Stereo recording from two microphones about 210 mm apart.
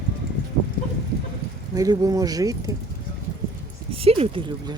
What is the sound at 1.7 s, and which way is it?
Speech, 15° right (ahead or behind).